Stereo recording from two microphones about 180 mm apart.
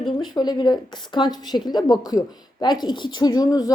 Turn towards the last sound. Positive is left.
turn(degrees=20)  # may be behind; listen again after turning